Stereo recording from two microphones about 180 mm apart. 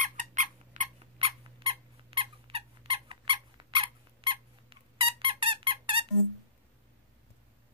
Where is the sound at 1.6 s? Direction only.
30° right (ahead or behind).